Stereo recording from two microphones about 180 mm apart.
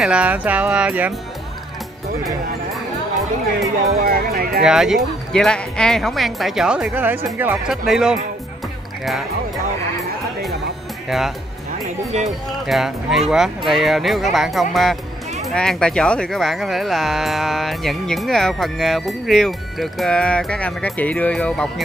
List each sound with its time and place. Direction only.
0.0 s speech: 5° right (ahead or behind)
4.0 s speech: 55° right (ahead or behind)
4.6 s speech: centre (ahead or behind)
11.1 s speech: centre (ahead or behind)
12.6 s speech: centre (ahead or behind)